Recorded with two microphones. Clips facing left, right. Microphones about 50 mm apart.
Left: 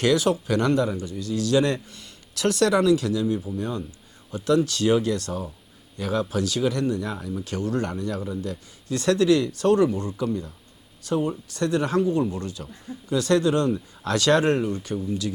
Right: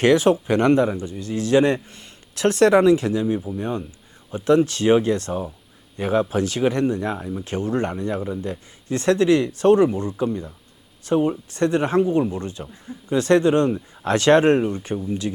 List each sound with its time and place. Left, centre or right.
0.0 s speech: right